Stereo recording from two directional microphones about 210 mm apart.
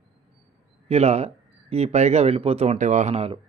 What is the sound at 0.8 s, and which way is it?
Speech, 30° right (ahead or behind).